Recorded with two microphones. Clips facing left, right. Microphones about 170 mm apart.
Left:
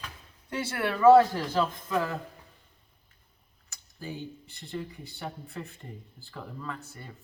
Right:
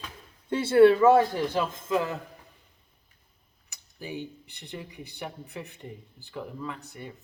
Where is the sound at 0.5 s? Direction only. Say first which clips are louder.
Right 13 dB; 25° right (ahead or behind).